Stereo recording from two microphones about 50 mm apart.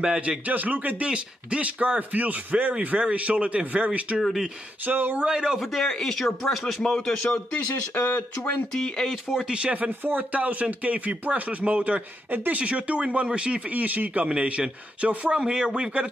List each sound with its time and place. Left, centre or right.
0.0 s a man's voice: centre
0.5 s speech: right
4.2 s speech: centre
4.8 s speech: right
5.2 s a man's voice: centre
5.7 s speech: centre
7.9 s speech: left
8.7 s speech: centre
9.5 s speech: right
13.7 s speech: right